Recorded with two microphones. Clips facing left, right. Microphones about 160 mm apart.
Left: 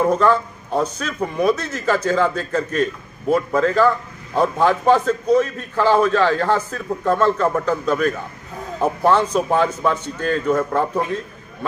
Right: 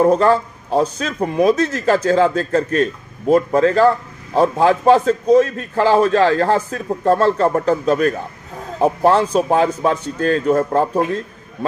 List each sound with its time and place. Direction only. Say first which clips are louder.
0.0 s a man's voice: right 3 dB; 40° right (ahead or behind)